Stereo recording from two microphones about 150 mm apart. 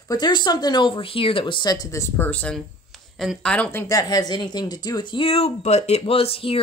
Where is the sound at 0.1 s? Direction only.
30° left (ahead or behind).